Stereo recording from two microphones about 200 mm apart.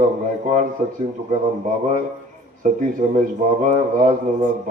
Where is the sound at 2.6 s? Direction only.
40° right (ahead or behind).